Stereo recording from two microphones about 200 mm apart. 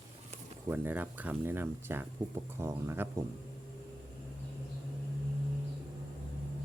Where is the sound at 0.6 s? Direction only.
10° right (ahead or behind).